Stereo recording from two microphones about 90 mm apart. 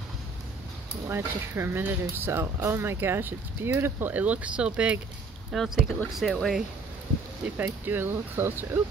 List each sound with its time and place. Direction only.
1.0 s speech: 30° right (ahead or behind); by 5.0 s 15° right (ahead or behind)
5.5 s speech: centre (ahead or behind)
7.5 s speech: 20° right (ahead or behind)